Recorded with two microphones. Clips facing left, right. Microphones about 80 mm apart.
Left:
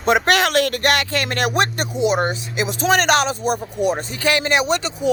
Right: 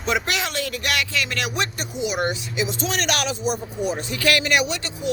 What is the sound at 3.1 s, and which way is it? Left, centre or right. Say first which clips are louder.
Speech: left 6 dB; left.